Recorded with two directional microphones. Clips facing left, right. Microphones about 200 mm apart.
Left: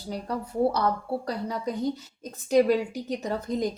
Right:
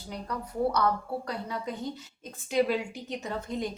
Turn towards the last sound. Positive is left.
turn(degrees=40)  # may be behind; listen again after turning